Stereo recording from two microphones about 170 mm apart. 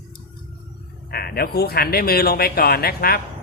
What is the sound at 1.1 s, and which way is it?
A woman's voice, 60° left (ahead or behind).